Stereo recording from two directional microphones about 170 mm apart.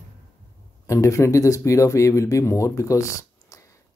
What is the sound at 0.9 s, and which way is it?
Speech, 15° left (ahead or behind).